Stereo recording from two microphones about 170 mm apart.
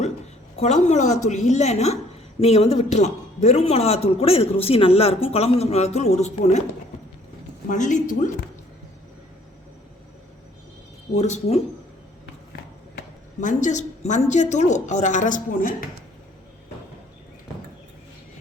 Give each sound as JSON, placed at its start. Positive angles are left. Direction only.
{"t": 0.5, "sound": "a woman's voice", "side_deg": 40}
{"t": 7.7, "sound": "a woman's voice", "side_deg": 50}
{"t": 11.1, "sound": "a woman's voice", "side_deg": 40}
{"t": 13.4, "sound": "a woman's voice", "side_deg": 45}